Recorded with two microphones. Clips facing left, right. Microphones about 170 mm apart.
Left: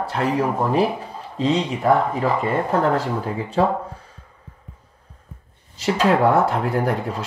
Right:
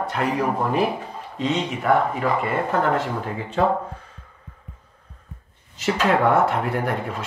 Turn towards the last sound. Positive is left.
turn(degrees=35)  # may be behind; listen again after turning